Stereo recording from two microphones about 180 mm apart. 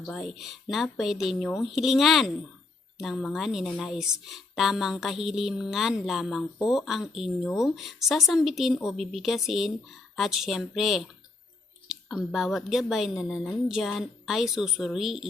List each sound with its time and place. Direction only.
0.0 s a woman's voice: centre (ahead or behind)